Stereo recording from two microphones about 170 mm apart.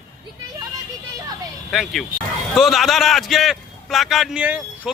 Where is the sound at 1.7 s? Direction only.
Centre (ahead or behind).